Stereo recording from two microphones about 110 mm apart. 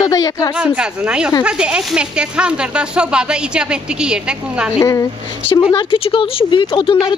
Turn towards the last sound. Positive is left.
turn(degrees=50)  # may be behind; listen again after turning